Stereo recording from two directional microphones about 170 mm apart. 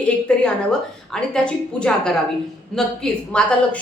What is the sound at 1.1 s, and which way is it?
A woman's voice, 5° left (ahead or behind).